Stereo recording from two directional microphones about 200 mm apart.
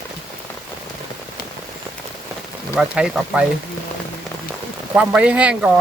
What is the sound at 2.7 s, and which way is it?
Speech, 5° right (ahead or behind).